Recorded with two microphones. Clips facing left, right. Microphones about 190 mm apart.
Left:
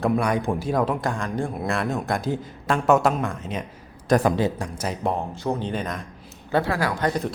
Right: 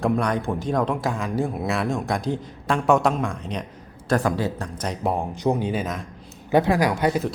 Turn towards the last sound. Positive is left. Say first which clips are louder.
# right 3 dB
turn(degrees=-5)  # may be behind; listen again after turning